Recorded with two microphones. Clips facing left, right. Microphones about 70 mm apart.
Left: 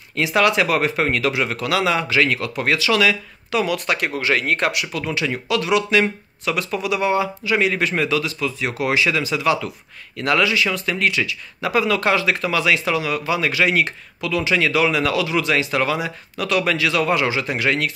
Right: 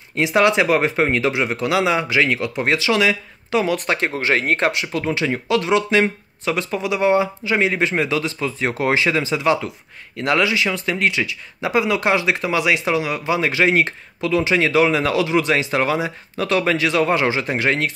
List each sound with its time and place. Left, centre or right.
0.1 s speech: right